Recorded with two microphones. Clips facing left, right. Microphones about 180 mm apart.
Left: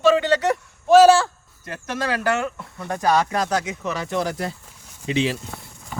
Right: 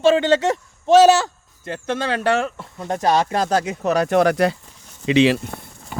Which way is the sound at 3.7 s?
40° right (ahead or behind).